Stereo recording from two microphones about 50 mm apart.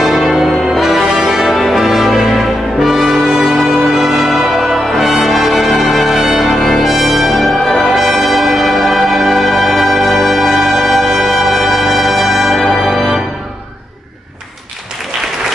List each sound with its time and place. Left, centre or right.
0.0 s music: centre
1.5 s brass instrument: centre